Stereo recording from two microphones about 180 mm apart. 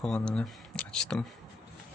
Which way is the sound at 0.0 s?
5° left (ahead or behind).